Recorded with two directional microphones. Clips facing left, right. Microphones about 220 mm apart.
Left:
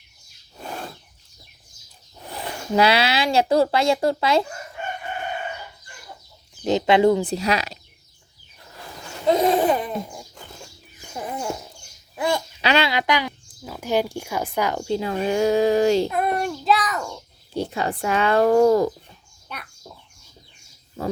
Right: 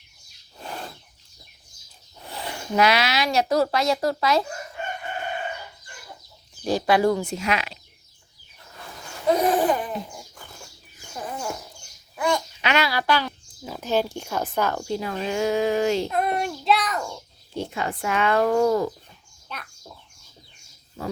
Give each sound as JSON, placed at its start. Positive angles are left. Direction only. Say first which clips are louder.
{"t": 2.7, "sound": "speech", "louder": "left 2 dB", "side_deg": 30}
{"t": 6.7, "sound": "speech", "louder": "left 3 dB", "side_deg": 20}
{"t": 7.3, "sound": "speech", "louder": "left 3 dB", "side_deg": 35}
{"t": 9.2, "sound": "speech", "louder": "left 2 dB", "side_deg": 25}
{"t": 11.1, "sound": "a sound", "louder": "left 3 dB", "side_deg": 20}
{"t": 12.1, "sound": "a child's voice", "louder": "left 1 dB", "side_deg": 25}
{"t": 14.8, "sound": "speech", "louder": "left 4 dB", "side_deg": 25}
{"t": 16.0, "sound": "a child's voice", "louder": "left 2 dB", "side_deg": 0}
{"t": 17.5, "sound": "speech", "louder": "left 3 dB", "side_deg": 35}